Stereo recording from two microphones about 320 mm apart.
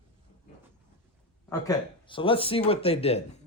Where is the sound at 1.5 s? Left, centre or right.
Centre.